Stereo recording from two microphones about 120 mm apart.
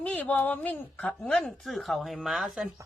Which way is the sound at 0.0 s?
10° left (ahead or behind).